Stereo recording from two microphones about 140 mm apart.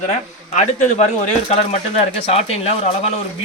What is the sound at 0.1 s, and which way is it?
Speech, 55° left (ahead or behind).